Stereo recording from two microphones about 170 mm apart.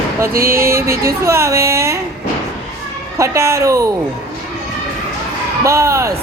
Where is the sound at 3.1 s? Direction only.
20° right (ahead or behind).